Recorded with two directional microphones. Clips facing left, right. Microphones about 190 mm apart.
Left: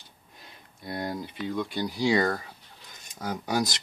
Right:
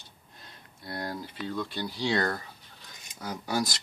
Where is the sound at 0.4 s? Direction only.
15° left (ahead or behind).